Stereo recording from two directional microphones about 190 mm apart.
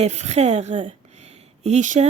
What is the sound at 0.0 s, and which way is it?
Speech, 35° right (ahead or behind).